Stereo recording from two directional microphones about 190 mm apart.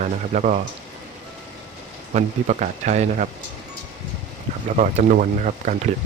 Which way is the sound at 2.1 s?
40° right (ahead or behind).